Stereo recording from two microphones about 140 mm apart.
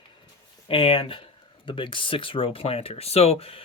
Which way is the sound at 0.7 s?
40° left (ahead or behind).